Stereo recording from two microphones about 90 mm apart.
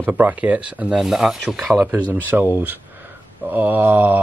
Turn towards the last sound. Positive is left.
turn(degrees=-20)  # may be behind; listen again after turning